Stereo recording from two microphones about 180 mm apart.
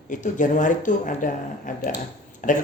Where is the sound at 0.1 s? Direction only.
45° left (ahead or behind).